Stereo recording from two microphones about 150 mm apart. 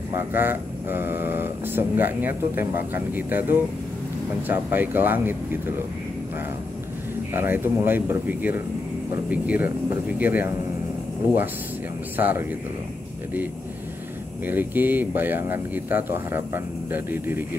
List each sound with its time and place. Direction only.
0.1 s speech: 15° right (ahead or behind)
4.5 s speech: 15° right (ahead or behind)
7.3 s speech: 15° right (ahead or behind)
12.2 s speech: 10° right (ahead or behind)
14.4 s speech: 10° right (ahead or behind)